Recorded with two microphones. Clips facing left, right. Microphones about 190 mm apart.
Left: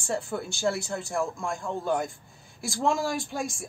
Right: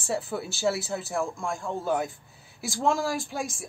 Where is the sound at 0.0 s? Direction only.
5° right (ahead or behind).